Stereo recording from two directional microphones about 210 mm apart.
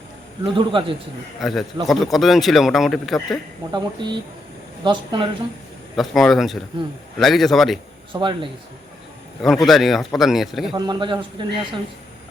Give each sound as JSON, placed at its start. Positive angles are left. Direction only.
{"t": 0.4, "sound": "a man's voice", "side_deg": -25}
{"t": 1.4, "sound": "speech", "side_deg": 0}
{"t": 3.7, "sound": "a man's voice", "side_deg": -20}
{"t": 6.0, "sound": "speech", "side_deg": 0}
{"t": 8.1, "sound": "a man's voice", "side_deg": -25}
{"t": 9.4, "sound": "speech", "side_deg": 0}
{"t": 10.8, "sound": "a man's voice", "side_deg": -20}